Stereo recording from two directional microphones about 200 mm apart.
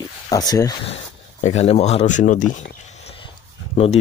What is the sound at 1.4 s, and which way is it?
Speech, 35° left (ahead or behind).